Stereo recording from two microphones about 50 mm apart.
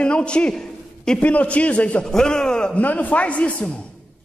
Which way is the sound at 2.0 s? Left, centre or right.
Centre.